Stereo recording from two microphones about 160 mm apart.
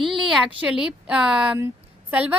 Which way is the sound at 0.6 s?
5° right (ahead or behind).